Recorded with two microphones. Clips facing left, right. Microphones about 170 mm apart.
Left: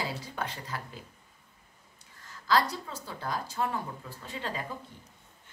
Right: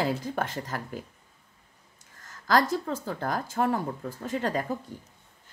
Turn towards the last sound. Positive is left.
turn(degrees=-45)  # may be behind; listen again after turning